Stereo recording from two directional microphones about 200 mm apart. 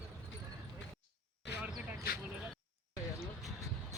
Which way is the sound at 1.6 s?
5° right (ahead or behind).